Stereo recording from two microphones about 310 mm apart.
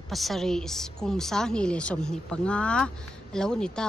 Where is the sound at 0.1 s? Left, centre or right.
Centre.